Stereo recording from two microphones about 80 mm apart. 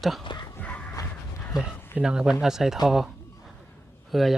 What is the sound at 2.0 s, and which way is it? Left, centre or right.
Speech, centre.